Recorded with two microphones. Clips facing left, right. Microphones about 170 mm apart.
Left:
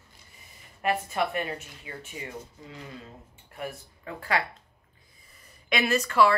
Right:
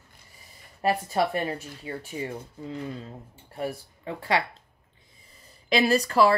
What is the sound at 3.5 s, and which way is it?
Speech, 30° right (ahead or behind).